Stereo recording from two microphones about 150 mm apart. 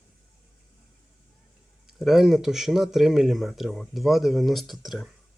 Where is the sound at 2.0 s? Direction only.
Centre (ahead or behind).